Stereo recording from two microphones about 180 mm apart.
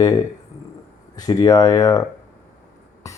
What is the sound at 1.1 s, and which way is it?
Speech, 20° left (ahead or behind).